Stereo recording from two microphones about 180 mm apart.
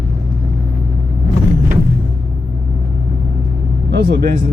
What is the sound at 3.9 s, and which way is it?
Vehicle, 75° right (ahead or behind).